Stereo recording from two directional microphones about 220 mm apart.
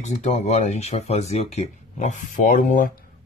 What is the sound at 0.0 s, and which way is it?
Speech, 30° left (ahead or behind).